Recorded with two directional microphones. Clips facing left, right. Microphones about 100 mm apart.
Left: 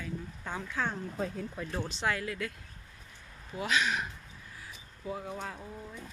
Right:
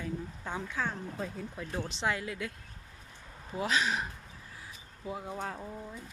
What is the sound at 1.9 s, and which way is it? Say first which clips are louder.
Speech: even; 20° right (ahead or behind).